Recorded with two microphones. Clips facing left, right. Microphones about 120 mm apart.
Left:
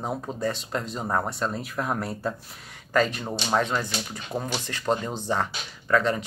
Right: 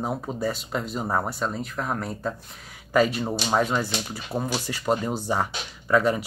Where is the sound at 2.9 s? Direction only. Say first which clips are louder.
Right 3 dB; 10° right (ahead or behind).